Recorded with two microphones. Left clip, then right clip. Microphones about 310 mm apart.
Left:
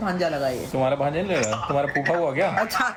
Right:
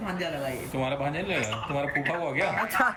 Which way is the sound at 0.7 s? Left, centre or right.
Centre.